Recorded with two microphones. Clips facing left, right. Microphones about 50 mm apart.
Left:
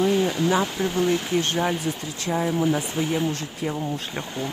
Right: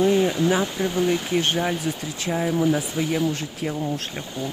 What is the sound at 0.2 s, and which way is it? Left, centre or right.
Speech, centre.